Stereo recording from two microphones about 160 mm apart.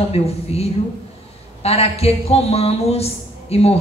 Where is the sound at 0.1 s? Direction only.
40° left (ahead or behind).